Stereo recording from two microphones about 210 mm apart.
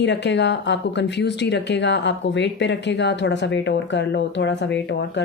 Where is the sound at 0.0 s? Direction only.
55° left (ahead or behind).